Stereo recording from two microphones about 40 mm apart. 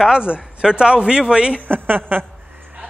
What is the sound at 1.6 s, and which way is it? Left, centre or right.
Speech, right.